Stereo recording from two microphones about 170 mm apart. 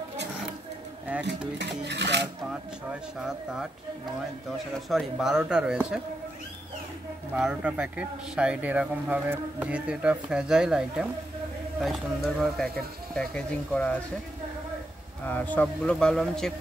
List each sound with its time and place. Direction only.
1.6 s music: 90° right
2.5 s speech: 5° right (ahead or behind)
4.8 s speech: centre (ahead or behind)
7.3 s speech: 5° right (ahead or behind)
15.2 s speech: 10° left (ahead or behind)